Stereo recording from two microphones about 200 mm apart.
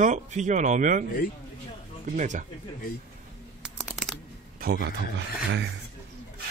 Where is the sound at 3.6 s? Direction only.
Centre (ahead or behind).